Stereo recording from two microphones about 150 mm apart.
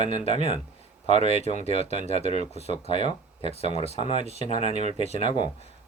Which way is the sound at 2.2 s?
50° right (ahead or behind).